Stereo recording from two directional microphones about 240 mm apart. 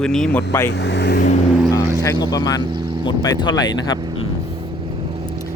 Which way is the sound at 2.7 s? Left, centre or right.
Centre.